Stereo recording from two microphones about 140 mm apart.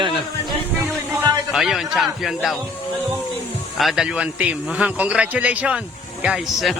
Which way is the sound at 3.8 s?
Centre (ahead or behind).